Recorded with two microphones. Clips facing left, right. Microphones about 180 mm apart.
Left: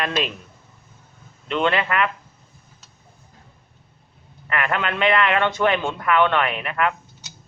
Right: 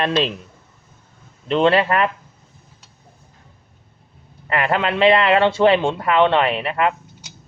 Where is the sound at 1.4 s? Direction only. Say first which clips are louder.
Right 6 dB; 35° right (ahead or behind).